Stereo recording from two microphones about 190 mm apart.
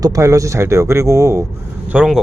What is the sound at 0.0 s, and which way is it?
Speech, 15° right (ahead or behind).